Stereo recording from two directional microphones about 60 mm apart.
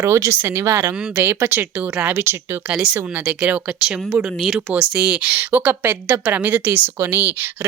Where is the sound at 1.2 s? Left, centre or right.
Right.